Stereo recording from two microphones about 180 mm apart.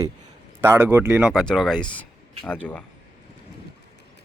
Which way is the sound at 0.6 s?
10° right (ahead or behind).